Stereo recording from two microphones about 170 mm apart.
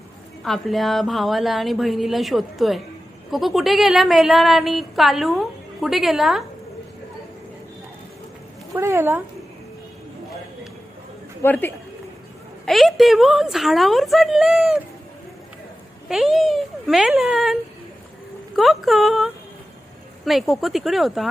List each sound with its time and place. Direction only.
0.4 s a woman's voice: centre (ahead or behind)
8.7 s speech: 15° right (ahead or behind)
11.4 s speech: 10° left (ahead or behind)
12.6 s a woman's voice: centre (ahead or behind)
16.0 s a woman's voice: 5° right (ahead or behind)